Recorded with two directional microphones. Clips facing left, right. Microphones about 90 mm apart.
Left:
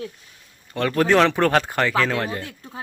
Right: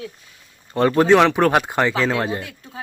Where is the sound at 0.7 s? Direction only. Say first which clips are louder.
Right 5 dB; 25° right (ahead or behind).